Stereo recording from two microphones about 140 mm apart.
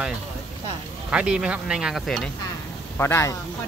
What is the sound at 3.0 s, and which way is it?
Speech, 20° left (ahead or behind).